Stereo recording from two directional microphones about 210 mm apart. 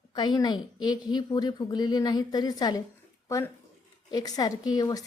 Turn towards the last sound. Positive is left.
turn(degrees=15)  # may be behind; listen again after turning